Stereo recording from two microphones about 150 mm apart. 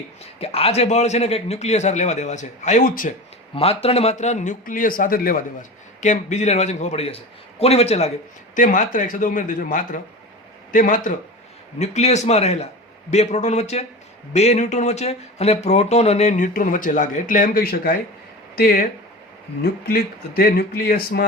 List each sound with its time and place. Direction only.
0.2 s speech: 40° left (ahead or behind); by 3.1 s 65° left (ahead or behind)
3.5 s speech: 40° left (ahead or behind); by 5.4 s 75° left (ahead or behind)
6.0 s speech: 55° left (ahead or behind)
8.5 s a man's voice: 60° left (ahead or behind)
11.8 s speech: 50° left (ahead or behind); by 21.2 s 85° left